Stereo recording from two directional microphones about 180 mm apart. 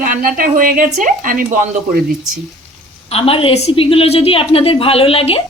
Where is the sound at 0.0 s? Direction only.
50° right (ahead or behind).